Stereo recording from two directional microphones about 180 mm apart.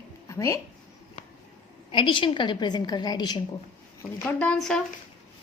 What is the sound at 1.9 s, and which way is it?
A woman's voice, 30° left (ahead or behind).